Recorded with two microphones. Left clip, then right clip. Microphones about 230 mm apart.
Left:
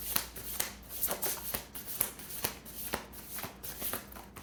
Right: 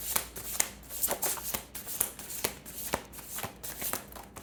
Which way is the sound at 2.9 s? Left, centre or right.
Right.